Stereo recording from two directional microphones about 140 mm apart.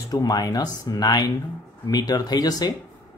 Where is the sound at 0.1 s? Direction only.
30° left (ahead or behind).